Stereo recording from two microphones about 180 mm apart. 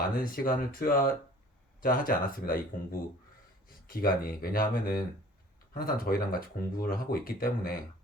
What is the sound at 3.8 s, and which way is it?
Speech, 55° left (ahead or behind).